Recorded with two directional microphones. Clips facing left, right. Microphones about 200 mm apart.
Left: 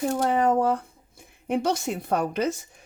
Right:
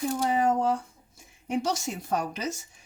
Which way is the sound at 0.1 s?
60° left (ahead or behind).